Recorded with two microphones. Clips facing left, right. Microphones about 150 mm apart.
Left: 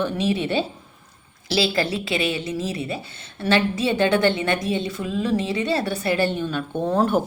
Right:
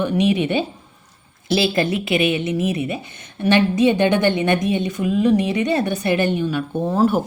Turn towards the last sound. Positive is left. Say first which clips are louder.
# right 2 dB
turn(degrees=-5)  # may be behind; listen again after turning